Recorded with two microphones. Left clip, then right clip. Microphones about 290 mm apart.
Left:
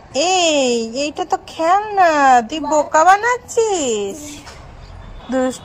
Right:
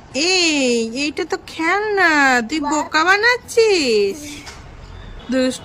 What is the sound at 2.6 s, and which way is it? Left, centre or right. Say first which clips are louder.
Speech: left 4 dB; right.